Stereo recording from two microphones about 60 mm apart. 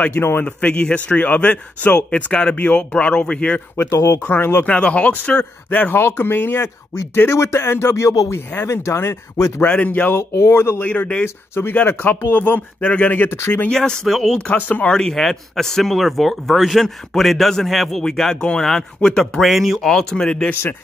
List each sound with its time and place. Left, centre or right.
0.1 s speech: left; by 3.6 s centre
3.7 s speech: left
4.6 s speech: left
5.9 s speech: left
7.2 s speech: left
9.7 s speech: left
10.1 s speech: left
10.8 s speech: left
12.8 s speech: centre
14.7 s speech: left
15.0 s speech: centre
19.4 s speech: centre
19.9 s speech: centre